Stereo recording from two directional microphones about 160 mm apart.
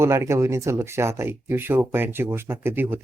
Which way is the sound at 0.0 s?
15° right (ahead or behind).